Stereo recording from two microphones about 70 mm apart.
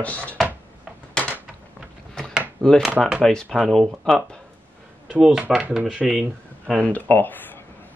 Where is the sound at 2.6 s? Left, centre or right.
Centre.